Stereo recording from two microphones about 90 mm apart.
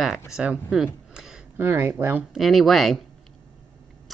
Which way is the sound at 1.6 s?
25° right (ahead or behind).